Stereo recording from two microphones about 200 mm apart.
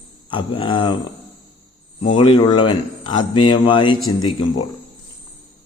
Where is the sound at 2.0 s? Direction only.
25° left (ahead or behind).